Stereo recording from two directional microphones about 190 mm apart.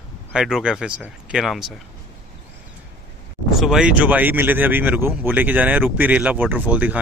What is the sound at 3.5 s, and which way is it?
Speech, 5° right (ahead or behind).